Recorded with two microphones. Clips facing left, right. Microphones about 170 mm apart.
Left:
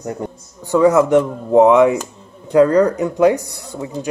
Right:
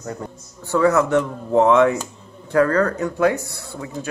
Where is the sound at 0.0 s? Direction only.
20° left (ahead or behind).